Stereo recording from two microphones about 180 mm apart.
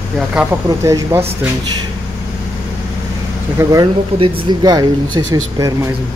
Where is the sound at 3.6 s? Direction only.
15° right (ahead or behind).